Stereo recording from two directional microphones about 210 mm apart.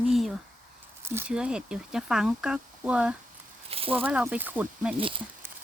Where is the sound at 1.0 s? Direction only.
10° right (ahead or behind).